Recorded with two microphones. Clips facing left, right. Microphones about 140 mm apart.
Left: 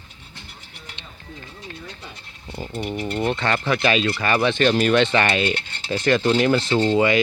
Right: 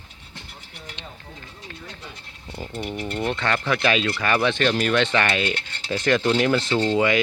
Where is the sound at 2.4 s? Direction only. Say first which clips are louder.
Left 2 dB; 10° left (ahead or behind).